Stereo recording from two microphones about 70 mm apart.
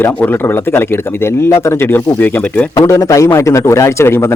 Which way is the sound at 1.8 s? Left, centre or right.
Left.